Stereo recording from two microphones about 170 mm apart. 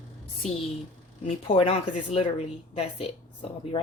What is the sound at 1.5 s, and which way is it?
Speech, 35° left (ahead or behind).